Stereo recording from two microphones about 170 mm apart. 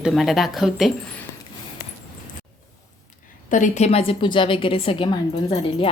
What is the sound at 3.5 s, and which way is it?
A woman's voice, 50° left (ahead or behind).